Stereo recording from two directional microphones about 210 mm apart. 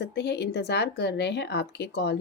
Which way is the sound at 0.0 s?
50° left (ahead or behind).